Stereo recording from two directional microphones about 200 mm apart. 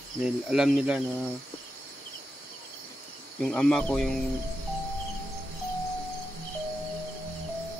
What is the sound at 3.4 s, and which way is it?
Speech, 5° left (ahead or behind).